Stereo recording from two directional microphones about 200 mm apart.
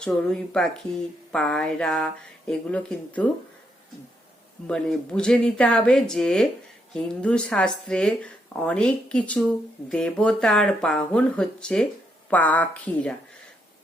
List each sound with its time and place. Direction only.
0.0 s a woman's voice: 5° left (ahead or behind)
4.6 s a woman's voice: 5° left (ahead or behind)